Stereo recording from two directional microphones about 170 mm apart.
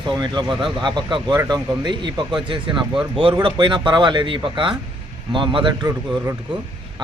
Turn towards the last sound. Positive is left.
turn(degrees=-30)  # may be behind; listen again after turning